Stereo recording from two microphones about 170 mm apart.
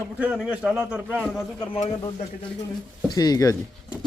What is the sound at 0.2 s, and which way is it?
A man's voice, 5° right (ahead or behind).